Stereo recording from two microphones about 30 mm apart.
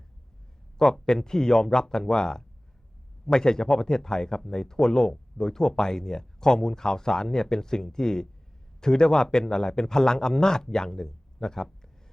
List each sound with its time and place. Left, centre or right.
0.8 s a man's voice: centre